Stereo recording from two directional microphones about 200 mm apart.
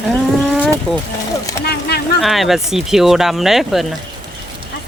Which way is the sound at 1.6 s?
55° left (ahead or behind).